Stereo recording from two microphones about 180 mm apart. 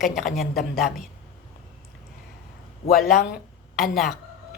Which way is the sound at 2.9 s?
50° left (ahead or behind).